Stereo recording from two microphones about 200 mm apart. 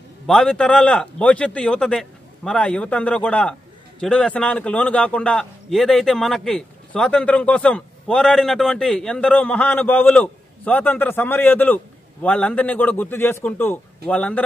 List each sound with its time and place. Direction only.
0.3 s a man's voice: 5° left (ahead or behind)